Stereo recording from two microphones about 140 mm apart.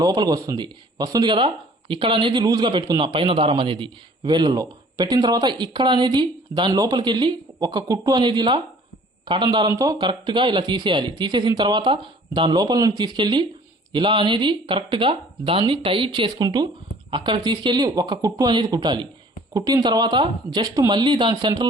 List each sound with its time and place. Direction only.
0.0 s a man's voice: 25° right (ahead or behind)